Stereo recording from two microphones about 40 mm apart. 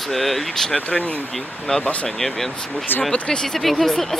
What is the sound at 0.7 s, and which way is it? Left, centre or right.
Speech, left.